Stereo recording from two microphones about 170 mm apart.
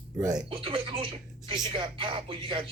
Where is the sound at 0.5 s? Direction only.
30° right (ahead or behind).